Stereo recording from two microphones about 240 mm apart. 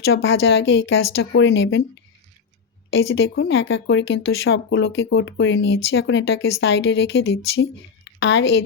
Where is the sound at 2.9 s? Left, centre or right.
Left.